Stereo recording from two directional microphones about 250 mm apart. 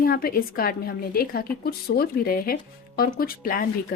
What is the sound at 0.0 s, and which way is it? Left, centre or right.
Speech, left.